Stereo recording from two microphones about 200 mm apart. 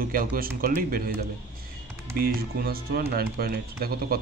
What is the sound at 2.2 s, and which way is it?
Speech, 50° right (ahead or behind).